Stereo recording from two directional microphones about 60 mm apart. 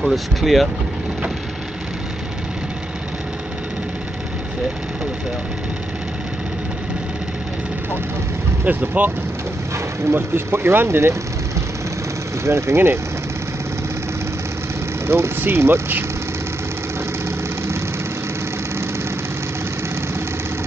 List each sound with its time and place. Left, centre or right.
0.0 s speech: centre
8.6 s speech: right
10.1 s speech: right
12.4 s speech: right
15.0 s speech: right